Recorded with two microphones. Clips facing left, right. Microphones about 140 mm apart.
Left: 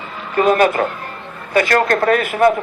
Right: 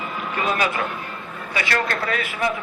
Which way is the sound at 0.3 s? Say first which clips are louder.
Left 10 dB; 45° left (ahead or behind).